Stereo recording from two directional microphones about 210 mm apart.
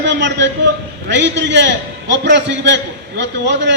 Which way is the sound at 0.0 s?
55° right (ahead or behind).